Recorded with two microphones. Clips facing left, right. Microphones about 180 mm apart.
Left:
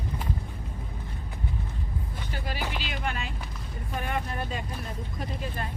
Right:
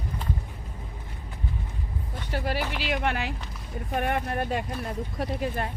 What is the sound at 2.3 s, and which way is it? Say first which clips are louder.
Speech: right 5 dB; 65° right (ahead or behind).